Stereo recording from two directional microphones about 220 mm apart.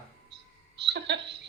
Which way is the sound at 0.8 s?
50° right (ahead or behind).